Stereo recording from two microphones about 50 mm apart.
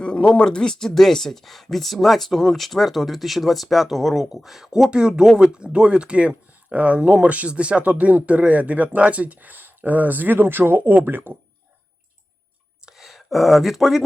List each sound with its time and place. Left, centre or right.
0.0 s speech: centre; by 11.3 s right
13.0 s speech: centre